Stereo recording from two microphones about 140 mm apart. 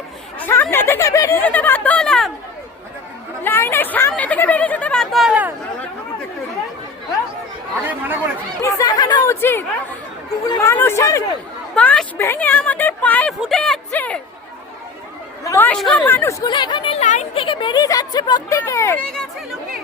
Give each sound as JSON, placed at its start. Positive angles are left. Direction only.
{"t": 0.3, "sound": "speech", "side_deg": 15}
{"t": 1.4, "sound": "speech", "side_deg": 10}
{"t": 3.4, "sound": "speech", "side_deg": 15}
{"t": 7.9, "sound": "speech", "side_deg": -15}
{"t": 8.6, "sound": "speech", "side_deg": 25}
{"t": 10.7, "sound": "speech", "side_deg": 20}
{"t": 11.7, "sound": "speech", "side_deg": 10}
{"t": 13.9, "sound": "a sound", "side_deg": 10}
{"t": 15.4, "sound": "speech", "side_deg": 15}
{"t": 16.0, "sound": "speech", "side_deg": 15}
{"t": 16.4, "sound": "speech", "side_deg": 30}
{"t": 17.0, "sound": "speech", "side_deg": 55}
{"t": 17.4, "sound": "speech", "side_deg": 35}